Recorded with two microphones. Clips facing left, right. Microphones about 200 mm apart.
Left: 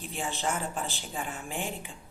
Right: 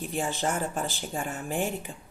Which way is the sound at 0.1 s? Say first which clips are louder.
Right 3 dB; 45° right (ahead or behind).